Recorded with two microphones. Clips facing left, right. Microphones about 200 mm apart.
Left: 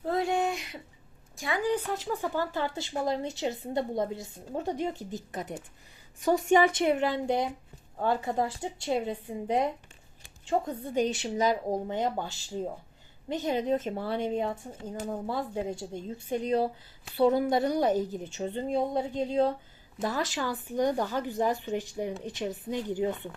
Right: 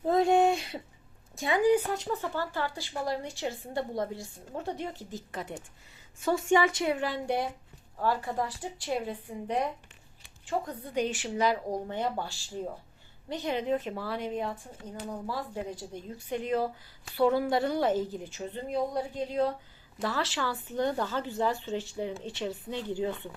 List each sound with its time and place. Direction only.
0.0 s a sound: 20° right (ahead or behind)
1.4 s speech: 20° right (ahead or behind)
2.2 s a woman's voice: 15° left (ahead or behind)
10.9 s speech: 40° left (ahead or behind)
11.7 s speech: 15° left (ahead or behind)
13.4 s speech: 45° left (ahead or behind)
14.0 s a woman's voice: 25° left (ahead or behind)
16.3 s speech: 40° left (ahead or behind)
17.2 s a woman's voice: 20° left (ahead or behind)
18.3 s a woman's voice: 30° left (ahead or behind)